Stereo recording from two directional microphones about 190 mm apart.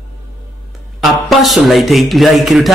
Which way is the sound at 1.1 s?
Centre (ahead or behind).